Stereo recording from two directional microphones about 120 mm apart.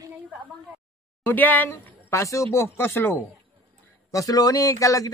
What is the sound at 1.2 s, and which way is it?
Speech, 15° left (ahead or behind).